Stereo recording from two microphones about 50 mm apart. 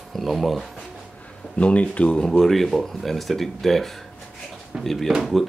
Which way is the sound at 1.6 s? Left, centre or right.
Left.